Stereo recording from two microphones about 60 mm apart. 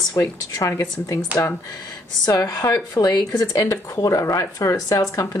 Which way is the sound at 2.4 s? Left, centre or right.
Left.